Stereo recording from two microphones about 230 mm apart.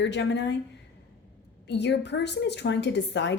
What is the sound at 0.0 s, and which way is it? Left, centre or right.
Speech, left.